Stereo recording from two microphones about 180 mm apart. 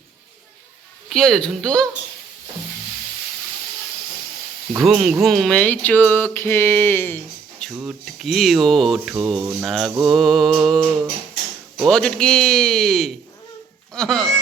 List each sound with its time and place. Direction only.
1.1 s speech: 5° left (ahead or behind)
4.7 s speech: 5° right (ahead or behind)
5.2 s a sound: centre (ahead or behind)
7.7 s speech: 5° right (ahead or behind)